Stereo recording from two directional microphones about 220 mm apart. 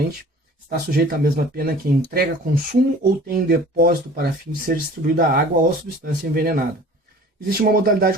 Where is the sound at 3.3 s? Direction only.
40° right (ahead or behind).